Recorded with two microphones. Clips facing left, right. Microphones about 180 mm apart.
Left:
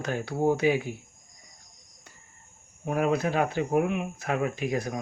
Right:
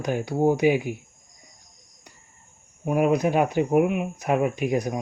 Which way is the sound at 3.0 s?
15° right (ahead or behind).